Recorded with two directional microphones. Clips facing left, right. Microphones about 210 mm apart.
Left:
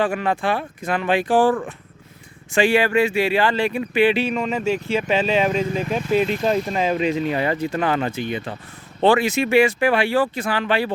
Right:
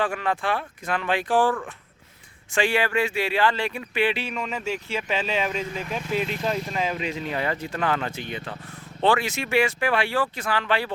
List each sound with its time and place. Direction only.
0.0 s speech: 10° left (ahead or behind)
2.5 s speech: 10° left (ahead or behind)